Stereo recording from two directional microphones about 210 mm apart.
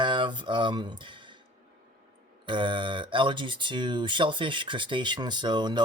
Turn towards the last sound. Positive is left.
turn(degrees=-20)  # may be behind; listen again after turning